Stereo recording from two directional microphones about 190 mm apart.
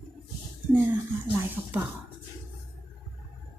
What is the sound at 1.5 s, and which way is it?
Speech, 10° right (ahead or behind).